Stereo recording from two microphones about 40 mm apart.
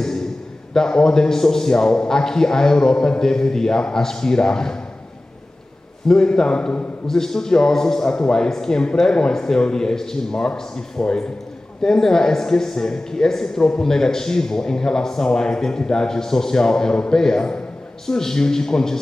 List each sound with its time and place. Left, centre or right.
0.0 s a sound: centre
0.7 s a man's voice: centre
6.0 s a man's voice: centre